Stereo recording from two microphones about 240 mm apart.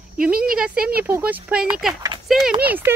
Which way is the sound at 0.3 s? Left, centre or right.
Right.